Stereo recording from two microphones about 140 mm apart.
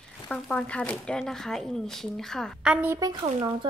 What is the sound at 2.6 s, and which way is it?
Speech, 5° right (ahead or behind).